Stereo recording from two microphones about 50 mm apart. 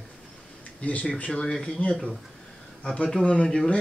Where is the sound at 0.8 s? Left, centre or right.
Left.